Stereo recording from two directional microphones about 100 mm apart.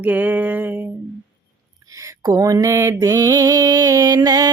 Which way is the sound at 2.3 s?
35° right (ahead or behind).